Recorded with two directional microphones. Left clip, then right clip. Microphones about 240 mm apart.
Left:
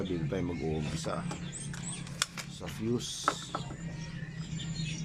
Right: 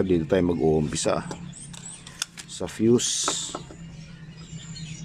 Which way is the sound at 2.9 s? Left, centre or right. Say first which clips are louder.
Right 9 dB; right.